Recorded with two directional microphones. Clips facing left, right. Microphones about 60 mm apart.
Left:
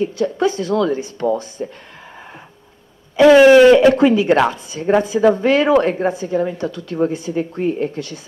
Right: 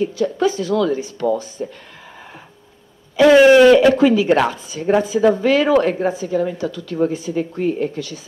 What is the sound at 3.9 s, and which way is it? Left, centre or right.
Speech, left.